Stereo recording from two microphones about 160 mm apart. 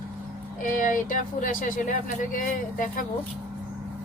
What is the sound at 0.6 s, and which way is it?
Speech, 55° left (ahead or behind).